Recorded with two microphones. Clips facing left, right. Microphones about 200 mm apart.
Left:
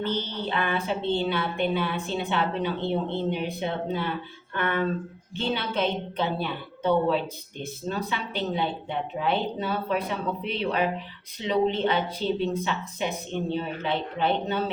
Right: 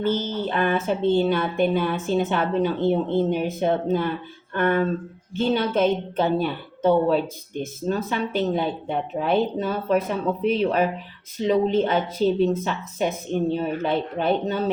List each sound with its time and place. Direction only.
0.0 s a woman's voice: 45° right (ahead or behind)